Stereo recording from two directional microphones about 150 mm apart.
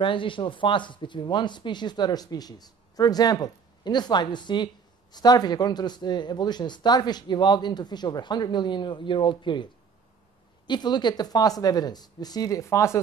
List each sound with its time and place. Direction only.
0.0 s speech: 35° left (ahead or behind)
10.7 s speech: 30° left (ahead or behind)